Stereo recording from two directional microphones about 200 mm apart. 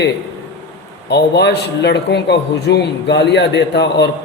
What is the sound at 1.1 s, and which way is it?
A man's voice, 55° left (ahead or behind).